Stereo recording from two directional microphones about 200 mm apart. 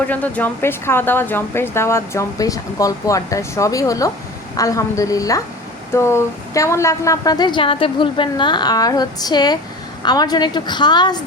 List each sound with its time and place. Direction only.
0.1 s a woman's voice: 10° left (ahead or behind)